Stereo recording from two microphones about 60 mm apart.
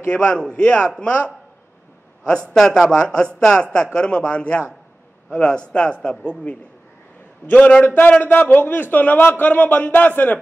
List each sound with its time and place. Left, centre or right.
0.1 s a man's voice: centre
2.5 s a man's voice: centre; by 10.4 s left